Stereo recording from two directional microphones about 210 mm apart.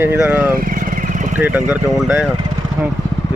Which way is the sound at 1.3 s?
10° right (ahead or behind).